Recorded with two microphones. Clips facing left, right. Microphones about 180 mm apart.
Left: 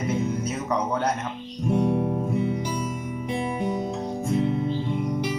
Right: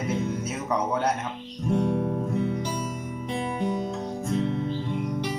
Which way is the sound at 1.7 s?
15° left (ahead or behind).